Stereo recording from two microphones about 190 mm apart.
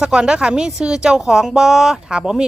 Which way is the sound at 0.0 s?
5° right (ahead or behind).